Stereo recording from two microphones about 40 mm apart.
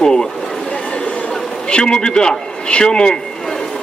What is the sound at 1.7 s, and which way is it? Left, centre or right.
A man's voice, left.